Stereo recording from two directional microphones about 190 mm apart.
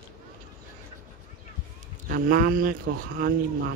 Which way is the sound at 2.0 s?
45° right (ahead or behind).